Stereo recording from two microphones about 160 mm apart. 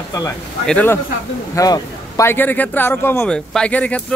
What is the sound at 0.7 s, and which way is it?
Speech, 10° left (ahead or behind).